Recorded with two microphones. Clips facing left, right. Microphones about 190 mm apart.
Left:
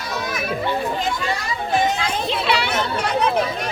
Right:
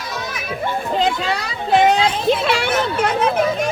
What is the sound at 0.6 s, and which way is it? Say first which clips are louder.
Children playing: right 1 dB; 50° right (ahead or behind).